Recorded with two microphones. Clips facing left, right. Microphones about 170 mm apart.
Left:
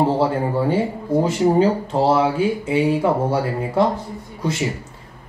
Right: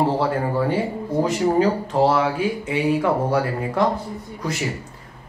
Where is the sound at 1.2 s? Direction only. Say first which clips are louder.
Left 2 dB; 30° left (ahead or behind).